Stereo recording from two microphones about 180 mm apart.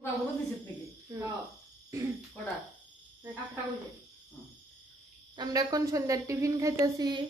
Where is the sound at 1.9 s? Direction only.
15° right (ahead or behind).